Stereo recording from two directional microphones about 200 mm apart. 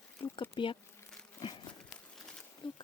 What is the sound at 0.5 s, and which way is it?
Speech, 25° left (ahead or behind).